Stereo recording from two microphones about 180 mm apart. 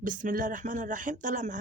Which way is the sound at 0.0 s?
45° right (ahead or behind).